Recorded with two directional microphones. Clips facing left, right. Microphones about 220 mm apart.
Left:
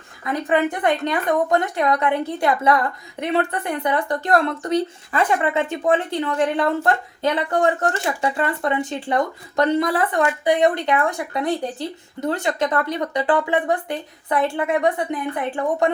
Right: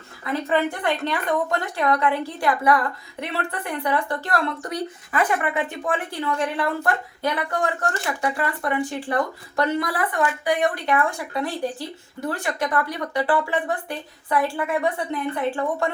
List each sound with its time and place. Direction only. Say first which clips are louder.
0.4 s a woman's voice: left 4 dB; 20° left (ahead or behind)